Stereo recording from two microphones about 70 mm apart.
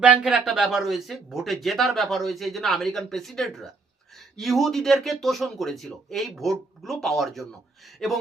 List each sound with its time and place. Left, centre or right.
0.0 s speech: centre